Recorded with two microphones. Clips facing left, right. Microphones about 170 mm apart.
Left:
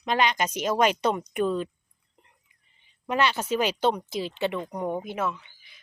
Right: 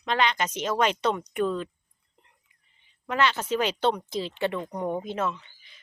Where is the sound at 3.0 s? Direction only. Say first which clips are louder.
Even; 15° left (ahead or behind).